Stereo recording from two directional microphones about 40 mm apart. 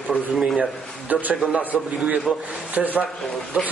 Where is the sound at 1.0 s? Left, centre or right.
Right.